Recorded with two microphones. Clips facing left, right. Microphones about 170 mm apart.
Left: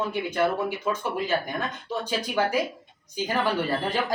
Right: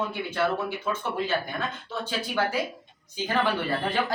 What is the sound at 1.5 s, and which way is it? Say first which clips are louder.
Speech: left 1 dB; 45° left (ahead or behind).